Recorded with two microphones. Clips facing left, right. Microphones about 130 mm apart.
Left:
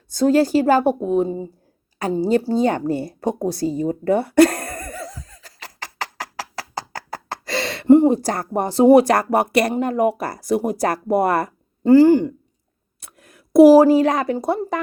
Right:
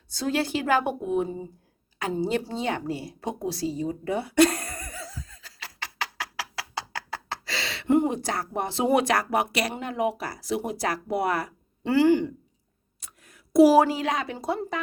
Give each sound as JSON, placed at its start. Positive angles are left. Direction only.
{"t": 0.1, "sound": "a woman's voice", "side_deg": 45}
{"t": 3.4, "sound": "a sound", "side_deg": 50}
{"t": 7.9, "sound": "speech", "side_deg": 35}
{"t": 13.1, "sound": "speech", "side_deg": 55}